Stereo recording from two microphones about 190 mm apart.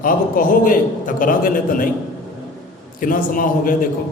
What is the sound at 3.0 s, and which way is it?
Speech, 45° left (ahead or behind).